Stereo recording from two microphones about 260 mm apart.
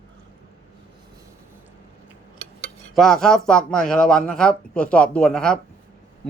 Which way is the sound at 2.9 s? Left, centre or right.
Centre.